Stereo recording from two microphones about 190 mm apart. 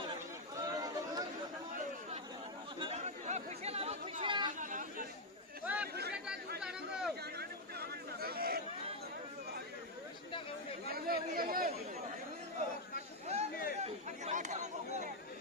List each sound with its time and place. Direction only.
0.6 s chatter: 20° right (ahead or behind)
2.8 s chatter: 35° right (ahead or behind)
4.6 s chatter: 45° right (ahead or behind)
5.6 s chatter: 10° right (ahead or behind)
5.9 s chatter: 60° right (ahead or behind)
6.6 s chatter: 5° right (ahead or behind)
7.3 s a sound: 55° right (ahead or behind)
10.9 s chatter: 50° right (ahead or behind)
13.2 s chatter: 35° right (ahead or behind)